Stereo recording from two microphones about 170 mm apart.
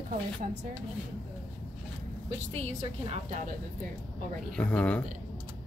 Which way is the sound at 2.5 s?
40° right (ahead or behind).